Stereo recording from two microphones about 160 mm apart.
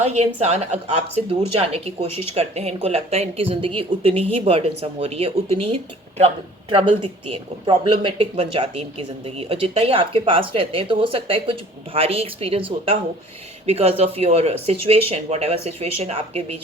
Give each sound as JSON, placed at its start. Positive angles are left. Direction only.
{"t": 0.0, "sound": "speech", "side_deg": -45}